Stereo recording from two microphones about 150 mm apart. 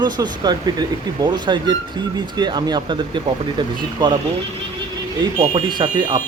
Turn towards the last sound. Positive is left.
turn(degrees=-30)  # may be behind; listen again after turning